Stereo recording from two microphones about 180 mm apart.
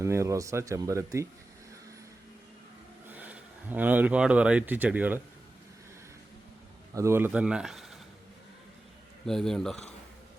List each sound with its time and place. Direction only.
0.0 s speech: 15° right (ahead or behind)
3.1 s speech: 10° right (ahead or behind)
6.9 s speech: 15° right (ahead or behind)
9.2 s speech: 5° left (ahead or behind)